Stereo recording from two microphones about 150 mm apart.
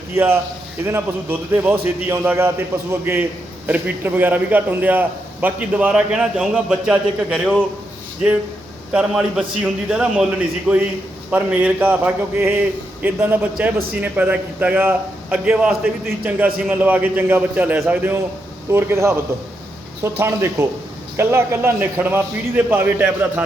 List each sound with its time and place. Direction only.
0.9 s a man's voice: 15° right (ahead or behind)
8.9 s a man's voice: 5° right (ahead or behind)